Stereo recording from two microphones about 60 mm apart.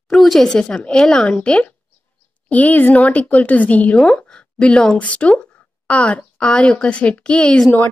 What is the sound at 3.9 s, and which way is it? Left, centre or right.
A woman's voice, centre.